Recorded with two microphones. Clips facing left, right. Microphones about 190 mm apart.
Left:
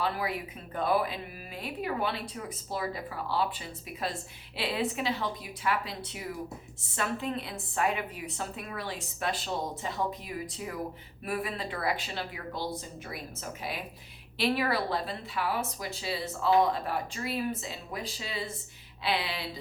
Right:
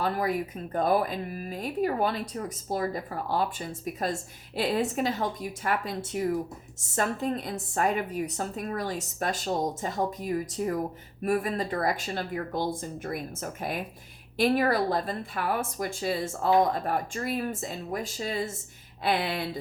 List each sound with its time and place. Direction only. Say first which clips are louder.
0.0 s speech: right 4 dB; 45° right (ahead or behind)